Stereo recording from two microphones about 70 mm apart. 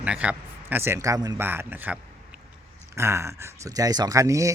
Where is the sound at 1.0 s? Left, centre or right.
Right.